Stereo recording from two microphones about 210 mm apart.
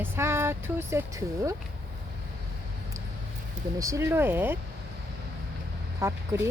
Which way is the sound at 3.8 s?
15° right (ahead or behind).